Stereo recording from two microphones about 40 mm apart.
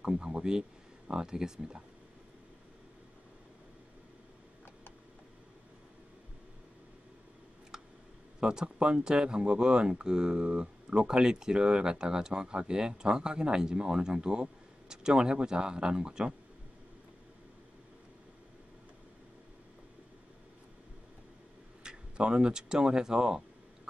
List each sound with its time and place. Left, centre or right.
0.0 s speech: centre
7.7 s a sound: centre
8.4 s speech: centre
21.8 s speech: right